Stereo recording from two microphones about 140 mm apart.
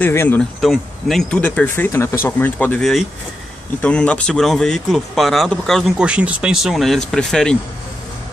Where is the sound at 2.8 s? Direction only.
Centre (ahead or behind).